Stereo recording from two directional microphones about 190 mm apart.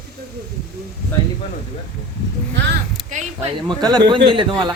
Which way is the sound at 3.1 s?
40° right (ahead or behind).